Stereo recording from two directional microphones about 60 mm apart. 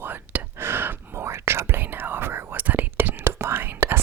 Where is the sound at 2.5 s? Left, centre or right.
Right.